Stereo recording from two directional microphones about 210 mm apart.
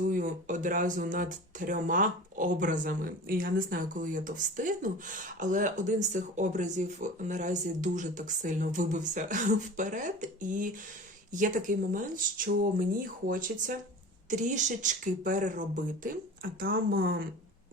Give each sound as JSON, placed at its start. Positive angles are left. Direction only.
{"t": 0.0, "sound": "speech", "side_deg": -40}
{"t": 13.2, "sound": "speech", "side_deg": -40}